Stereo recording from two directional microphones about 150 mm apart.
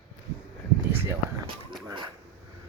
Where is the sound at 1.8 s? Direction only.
30° right (ahead or behind).